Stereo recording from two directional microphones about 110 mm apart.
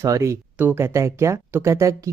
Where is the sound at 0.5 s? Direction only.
20° right (ahead or behind).